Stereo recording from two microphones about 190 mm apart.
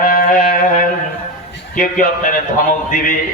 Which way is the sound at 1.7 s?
45° left (ahead or behind).